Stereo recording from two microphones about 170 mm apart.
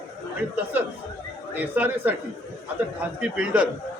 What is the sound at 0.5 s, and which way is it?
A man's voice, 10° right (ahead or behind).